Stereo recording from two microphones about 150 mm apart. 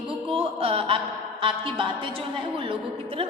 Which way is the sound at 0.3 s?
40° right (ahead or behind).